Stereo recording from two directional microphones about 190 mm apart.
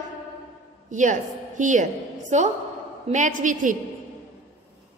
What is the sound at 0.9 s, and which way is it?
A woman's voice, 40° right (ahead or behind).